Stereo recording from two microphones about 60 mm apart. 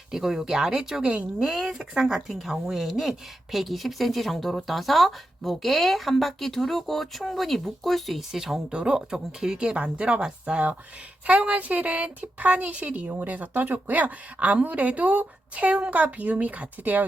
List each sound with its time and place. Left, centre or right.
0.1 s speech: centre
1.0 s a woman's voice: centre
1.5 s a woman's voice: centre; by 17.1 s right